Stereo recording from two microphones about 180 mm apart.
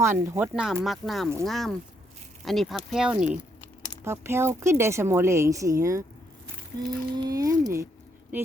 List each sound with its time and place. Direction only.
0.0 s speech: 15° right (ahead or behind)
7.2 s speech: 20° right (ahead or behind)